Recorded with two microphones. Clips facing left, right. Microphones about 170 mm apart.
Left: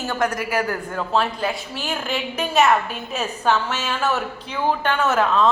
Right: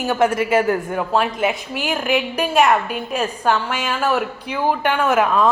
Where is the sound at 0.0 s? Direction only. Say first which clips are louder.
Right 5 dB; 20° right (ahead or behind).